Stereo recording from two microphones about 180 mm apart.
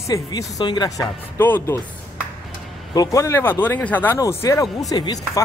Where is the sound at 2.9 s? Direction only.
20° left (ahead or behind).